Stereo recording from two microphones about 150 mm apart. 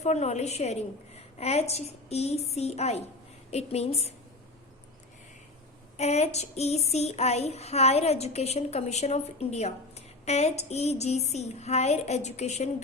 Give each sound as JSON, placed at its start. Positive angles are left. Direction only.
{"t": 0.0, "sound": "child singing", "side_deg": 50}
{"t": 6.0, "sound": "child singing", "side_deg": 45}